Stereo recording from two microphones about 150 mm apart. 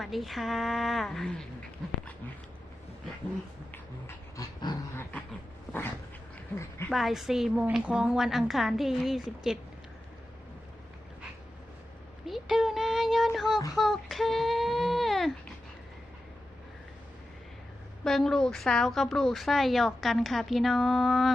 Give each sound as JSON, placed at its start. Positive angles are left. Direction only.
{"t": 0.0, "sound": "a woman's voice", "side_deg": 0}
{"t": 4.4, "sound": "dog", "side_deg": 25}
{"t": 6.9, "sound": "a woman's voice", "side_deg": 0}
{"t": 12.2, "sound": "a sound", "side_deg": 0}
{"t": 18.0, "sound": "a woman's voice", "side_deg": 5}